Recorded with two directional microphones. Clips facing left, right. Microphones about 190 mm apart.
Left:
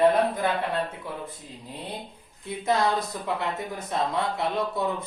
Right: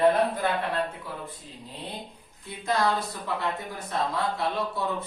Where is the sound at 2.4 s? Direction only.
20° left (ahead or behind).